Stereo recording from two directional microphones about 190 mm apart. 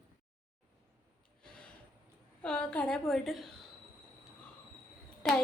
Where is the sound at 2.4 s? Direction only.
5° left (ahead or behind).